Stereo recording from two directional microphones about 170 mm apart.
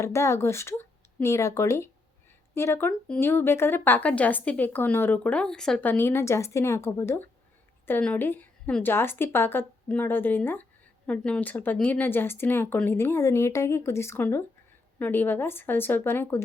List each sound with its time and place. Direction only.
0.0 s a woman's voice: 15° left (ahead or behind)